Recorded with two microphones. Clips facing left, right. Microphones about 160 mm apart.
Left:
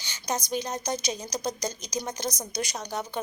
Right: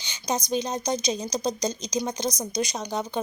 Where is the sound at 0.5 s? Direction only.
20° right (ahead or behind).